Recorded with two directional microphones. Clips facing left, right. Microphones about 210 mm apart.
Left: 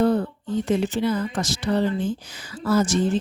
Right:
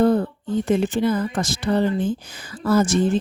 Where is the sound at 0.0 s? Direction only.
50° right (ahead or behind).